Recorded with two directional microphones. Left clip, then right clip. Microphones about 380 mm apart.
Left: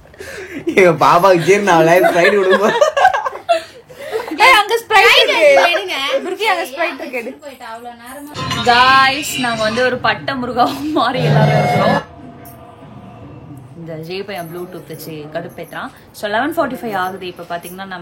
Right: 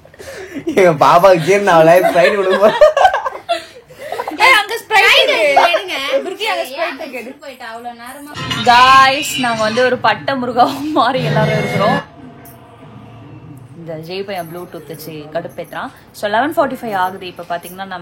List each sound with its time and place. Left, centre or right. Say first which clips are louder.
0.3 s speech: left 1 dB; centre
2.9 s a sound: right 1 dB; centre
6.4 s a woman's voice: left 2 dB; centre
8.6 s a woman's voice: right 3 dB; centre
11.4 s speech: left 3 dB; centre
13.8 s a woman's voice: right 2 dB; centre